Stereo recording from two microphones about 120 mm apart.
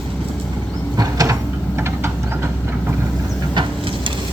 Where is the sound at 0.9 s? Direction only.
30° right (ahead or behind).